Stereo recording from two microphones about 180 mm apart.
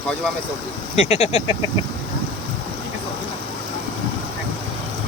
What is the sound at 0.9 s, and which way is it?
Speech, 35° left (ahead or behind).